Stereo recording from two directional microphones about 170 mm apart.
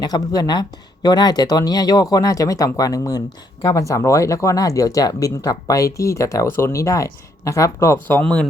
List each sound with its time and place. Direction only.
0.0 s speech: 25° left (ahead or behind); by 8.4 s 5° left (ahead or behind)